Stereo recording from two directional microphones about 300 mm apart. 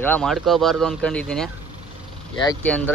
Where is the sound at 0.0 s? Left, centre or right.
Centre.